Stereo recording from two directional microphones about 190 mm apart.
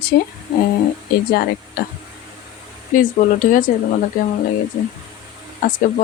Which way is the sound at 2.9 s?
45° left (ahead or behind).